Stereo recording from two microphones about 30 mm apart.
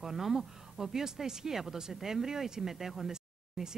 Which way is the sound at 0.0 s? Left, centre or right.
Centre.